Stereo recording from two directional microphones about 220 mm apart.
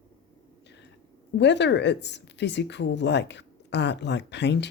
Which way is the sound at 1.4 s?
50° left (ahead or behind).